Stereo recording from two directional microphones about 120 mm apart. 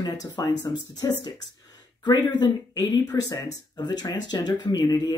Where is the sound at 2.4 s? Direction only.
30° left (ahead or behind).